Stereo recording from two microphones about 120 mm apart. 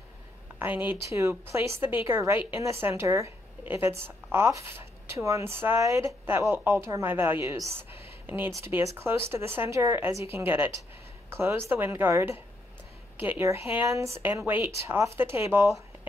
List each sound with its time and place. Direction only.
0.6 s a woman's voice: 15° right (ahead or behind)